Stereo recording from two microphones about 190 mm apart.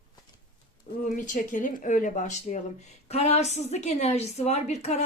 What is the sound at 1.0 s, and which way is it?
A woman's voice, 40° left (ahead or behind).